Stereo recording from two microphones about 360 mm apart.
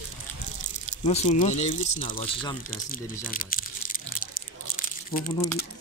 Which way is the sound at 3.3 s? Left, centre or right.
Left.